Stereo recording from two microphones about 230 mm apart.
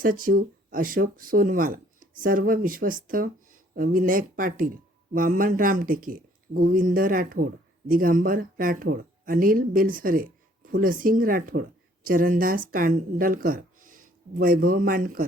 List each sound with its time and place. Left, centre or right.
0.0 s speech: right